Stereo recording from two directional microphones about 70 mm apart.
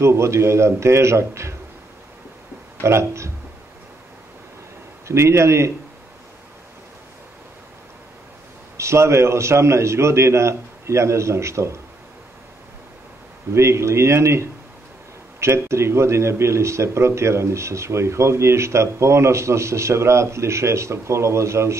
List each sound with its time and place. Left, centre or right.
0.0 s speech: right
2.8 s speech: right
5.0 s speech: right
8.7 s speech: right
13.5 s speech: right